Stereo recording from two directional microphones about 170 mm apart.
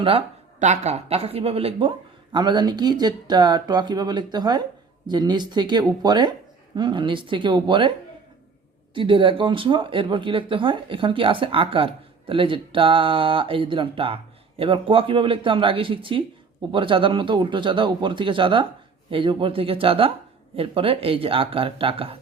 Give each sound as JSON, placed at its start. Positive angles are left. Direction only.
{"t": 0.6, "sound": "speech", "side_deg": -40}
{"t": 9.0, "sound": "speech", "side_deg": -30}